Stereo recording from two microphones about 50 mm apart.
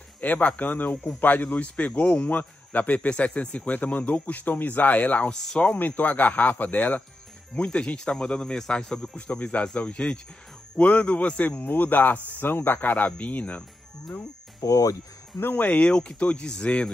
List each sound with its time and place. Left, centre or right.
0.2 s speech: left
5.3 s speech: centre
5.8 s speech: left
7.5 s speech: left
9.1 s speech: left
15.5 s speech: left
15.9 s speech: centre